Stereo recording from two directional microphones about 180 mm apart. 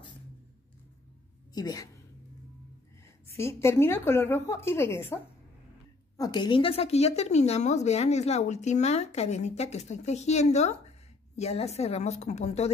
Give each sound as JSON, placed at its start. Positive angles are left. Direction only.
{"t": 1.5, "sound": "a woman's voice", "side_deg": 20}
{"t": 3.3, "sound": "a woman's voice", "side_deg": 15}